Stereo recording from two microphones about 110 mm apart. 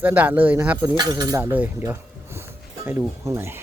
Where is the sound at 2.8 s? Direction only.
25° right (ahead or behind).